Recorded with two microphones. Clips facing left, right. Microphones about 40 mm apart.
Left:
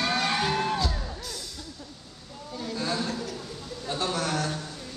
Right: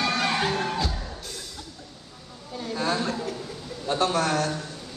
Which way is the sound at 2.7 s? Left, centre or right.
Right.